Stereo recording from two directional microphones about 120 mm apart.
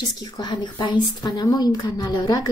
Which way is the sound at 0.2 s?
35° left (ahead or behind).